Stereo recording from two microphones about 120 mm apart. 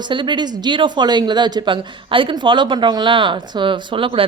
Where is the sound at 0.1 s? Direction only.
40° right (ahead or behind).